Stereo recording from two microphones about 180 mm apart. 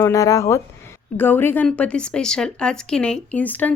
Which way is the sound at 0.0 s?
20° left (ahead or behind).